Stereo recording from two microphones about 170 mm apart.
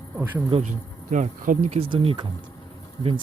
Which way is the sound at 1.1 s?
45° right (ahead or behind).